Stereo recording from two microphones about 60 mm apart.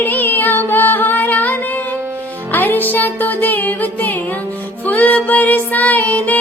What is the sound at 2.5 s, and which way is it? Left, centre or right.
Music, left.